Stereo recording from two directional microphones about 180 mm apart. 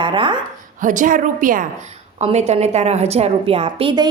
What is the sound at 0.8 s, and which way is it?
Speech, 45° right (ahead or behind).